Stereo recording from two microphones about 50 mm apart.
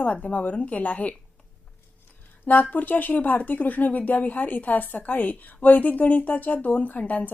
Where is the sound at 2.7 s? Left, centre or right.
Left.